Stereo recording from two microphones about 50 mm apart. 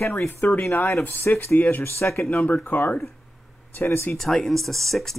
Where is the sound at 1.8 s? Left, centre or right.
Left.